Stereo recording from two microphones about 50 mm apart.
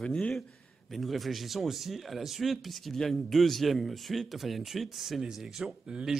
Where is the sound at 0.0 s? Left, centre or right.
Left.